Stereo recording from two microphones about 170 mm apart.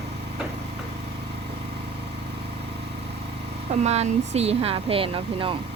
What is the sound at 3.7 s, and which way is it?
Speech, 40° right (ahead or behind).